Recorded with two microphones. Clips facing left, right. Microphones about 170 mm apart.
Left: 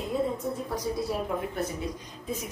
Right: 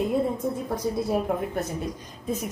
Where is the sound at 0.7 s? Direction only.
50° right (ahead or behind).